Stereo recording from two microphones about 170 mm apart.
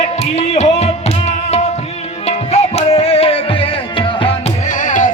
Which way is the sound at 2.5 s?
40° left (ahead or behind).